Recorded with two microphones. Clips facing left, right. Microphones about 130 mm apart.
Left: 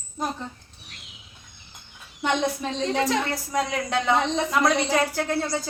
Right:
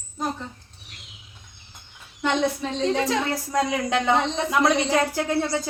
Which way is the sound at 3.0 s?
25° right (ahead or behind).